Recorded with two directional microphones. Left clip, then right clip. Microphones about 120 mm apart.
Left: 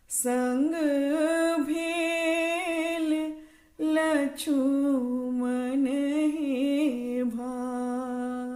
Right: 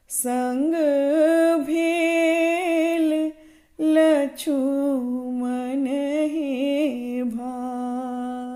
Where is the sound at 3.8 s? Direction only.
35° right (ahead or behind).